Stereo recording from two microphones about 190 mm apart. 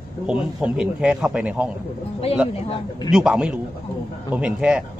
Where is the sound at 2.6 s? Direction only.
30° left (ahead or behind).